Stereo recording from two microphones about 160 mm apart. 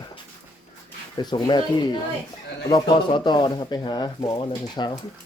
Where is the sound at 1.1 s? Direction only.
25° left (ahead or behind).